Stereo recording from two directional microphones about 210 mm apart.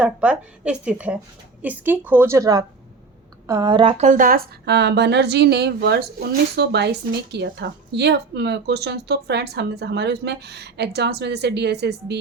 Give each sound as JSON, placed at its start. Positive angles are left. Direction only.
{"t": 0.0, "sound": "a woman's voice", "side_deg": -5}